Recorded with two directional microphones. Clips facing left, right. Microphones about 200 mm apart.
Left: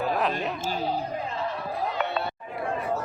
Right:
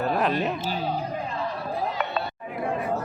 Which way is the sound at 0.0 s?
Centre (ahead or behind).